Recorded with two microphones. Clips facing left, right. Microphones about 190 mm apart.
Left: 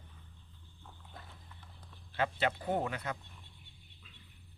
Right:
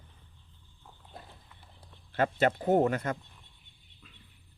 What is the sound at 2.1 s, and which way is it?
Speech, 45° right (ahead or behind).